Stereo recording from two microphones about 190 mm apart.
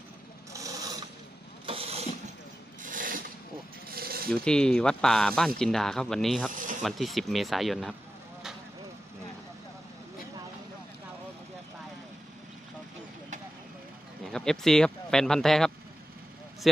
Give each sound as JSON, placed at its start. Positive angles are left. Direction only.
{"t": 0.5, "sound": "filing", "side_deg": -20}
{"t": 1.6, "sound": "vehicle", "side_deg": -30}
{"t": 2.8, "sound": "a sound", "side_deg": -45}
{"t": 4.3, "sound": "speech", "side_deg": 5}
{"t": 6.5, "sound": "ratchet", "side_deg": -45}
{"t": 6.8, "sound": "speech", "side_deg": 0}
{"t": 14.3, "sound": "speech", "side_deg": 5}